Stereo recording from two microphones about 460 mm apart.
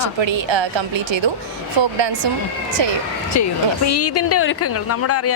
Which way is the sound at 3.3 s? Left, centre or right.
Left.